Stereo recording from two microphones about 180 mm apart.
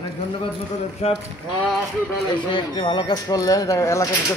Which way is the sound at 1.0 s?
40° left (ahead or behind).